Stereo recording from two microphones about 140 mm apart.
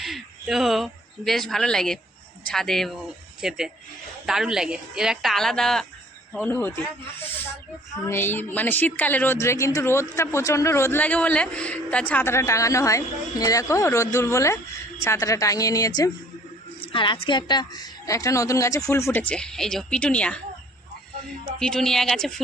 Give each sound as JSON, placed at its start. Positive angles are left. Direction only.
{"t": 0.0, "sound": "a woman's voice", "side_deg": 0}
{"t": 16.8, "sound": "a woman's voice", "side_deg": 35}
{"t": 21.6, "sound": "a woman's voice", "side_deg": 5}